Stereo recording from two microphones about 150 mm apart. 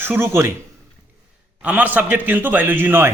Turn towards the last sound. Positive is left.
turn(degrees=-15)  # may be behind; listen again after turning